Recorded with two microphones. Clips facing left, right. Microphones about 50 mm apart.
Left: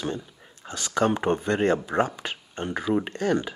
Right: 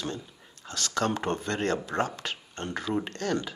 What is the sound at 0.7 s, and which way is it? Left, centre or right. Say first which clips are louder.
Speech: left 5 dB; centre.